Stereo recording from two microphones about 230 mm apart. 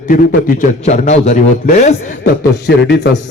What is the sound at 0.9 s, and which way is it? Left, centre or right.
A man's voice, left.